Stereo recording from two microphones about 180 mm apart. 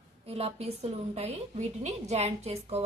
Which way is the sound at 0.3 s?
35° right (ahead or behind).